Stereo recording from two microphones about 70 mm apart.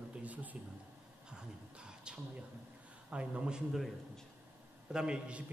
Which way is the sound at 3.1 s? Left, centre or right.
Centre.